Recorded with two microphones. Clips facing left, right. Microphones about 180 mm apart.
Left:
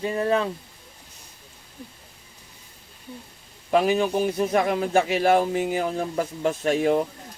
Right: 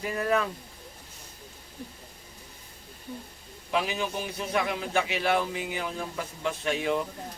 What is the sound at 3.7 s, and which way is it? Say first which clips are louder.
A man's voice: left 9 dB; 45° left (ahead or behind).